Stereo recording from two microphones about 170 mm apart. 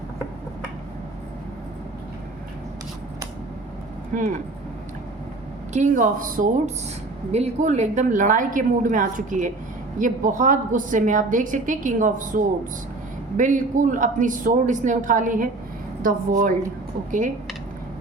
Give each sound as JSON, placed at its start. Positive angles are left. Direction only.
{"t": 5.7, "sound": "a woman's voice", "side_deg": -50}
{"t": 7.3, "sound": "a woman's voice", "side_deg": -40}